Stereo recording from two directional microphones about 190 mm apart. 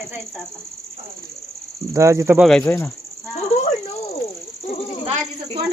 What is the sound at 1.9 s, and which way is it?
Speech, 15° right (ahead or behind).